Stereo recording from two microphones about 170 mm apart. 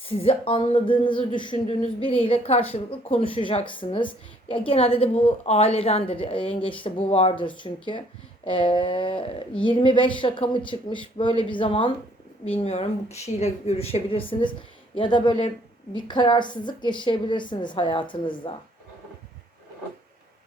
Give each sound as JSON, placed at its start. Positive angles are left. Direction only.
{"t": 0.1, "sound": "a woman's voice", "side_deg": 35}